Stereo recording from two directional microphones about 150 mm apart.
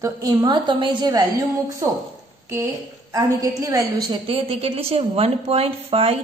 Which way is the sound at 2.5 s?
20° right (ahead or behind).